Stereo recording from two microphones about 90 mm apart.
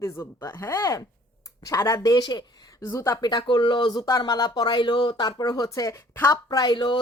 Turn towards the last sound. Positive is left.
turn(degrees=55)  # may be behind; listen again after turning